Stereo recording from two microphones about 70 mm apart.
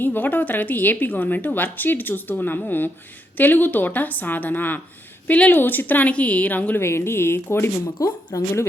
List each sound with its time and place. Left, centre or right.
0.0 s speech: left
6.7 s a woman's voice: left
7.9 s speech: left